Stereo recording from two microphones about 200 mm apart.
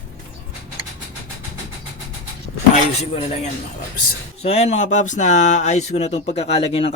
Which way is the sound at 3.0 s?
30° left (ahead or behind).